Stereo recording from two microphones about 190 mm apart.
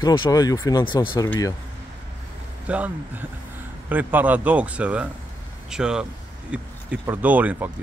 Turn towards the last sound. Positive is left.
turn(degrees=-10)  # may be behind; listen again after turning